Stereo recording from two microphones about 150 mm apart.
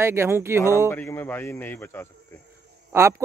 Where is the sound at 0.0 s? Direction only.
15° right (ahead or behind).